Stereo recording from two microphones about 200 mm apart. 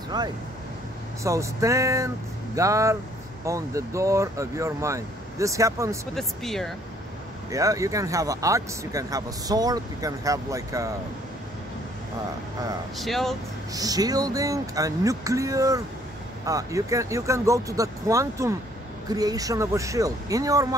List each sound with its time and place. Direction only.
0.1 s speech: 20° right (ahead or behind)
6.1 s speech: centre (ahead or behind)
7.5 s speech: 15° right (ahead or behind)
12.9 s speech: centre (ahead or behind)
13.7 s speech: 20° right (ahead or behind)